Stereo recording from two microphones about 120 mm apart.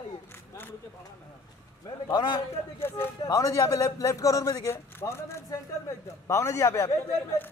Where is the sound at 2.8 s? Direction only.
20° left (ahead or behind).